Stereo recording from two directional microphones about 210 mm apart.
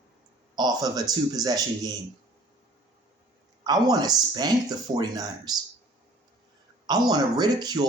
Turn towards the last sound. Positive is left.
turn(degrees=-20)  # may be behind; listen again after turning